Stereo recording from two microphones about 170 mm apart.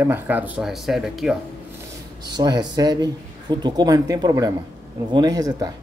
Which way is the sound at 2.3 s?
25° right (ahead or behind).